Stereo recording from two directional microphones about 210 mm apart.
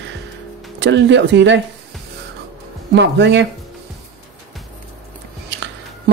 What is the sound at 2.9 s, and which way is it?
Speech, 55° right (ahead or behind).